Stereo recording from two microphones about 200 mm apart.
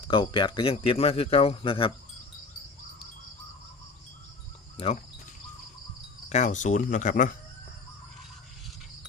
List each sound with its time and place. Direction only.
0.1 s a man's voice: 25° left (ahead or behind)
6.2 s speech: 35° left (ahead or behind)